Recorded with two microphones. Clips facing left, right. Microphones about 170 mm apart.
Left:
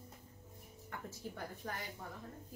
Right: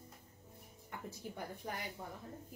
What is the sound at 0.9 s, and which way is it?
Speech, 15° right (ahead or behind).